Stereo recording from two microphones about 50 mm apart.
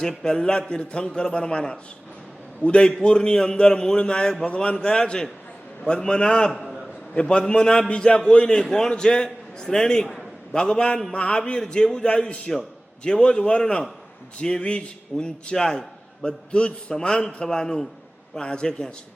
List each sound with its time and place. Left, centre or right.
0.0 s a man's voice: centre